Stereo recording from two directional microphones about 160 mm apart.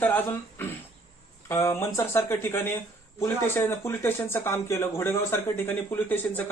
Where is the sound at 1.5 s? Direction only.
15° left (ahead or behind).